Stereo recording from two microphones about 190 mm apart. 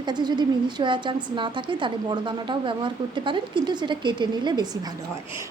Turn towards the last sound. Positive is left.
turn(degrees=-25)  # may be behind; listen again after turning